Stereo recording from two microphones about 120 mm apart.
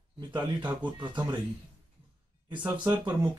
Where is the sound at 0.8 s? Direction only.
40° right (ahead or behind).